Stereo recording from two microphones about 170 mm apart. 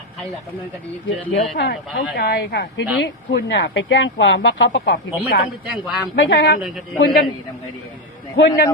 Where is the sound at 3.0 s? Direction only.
85° left.